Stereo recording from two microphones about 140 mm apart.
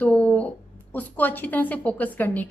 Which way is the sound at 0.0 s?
10° left (ahead or behind).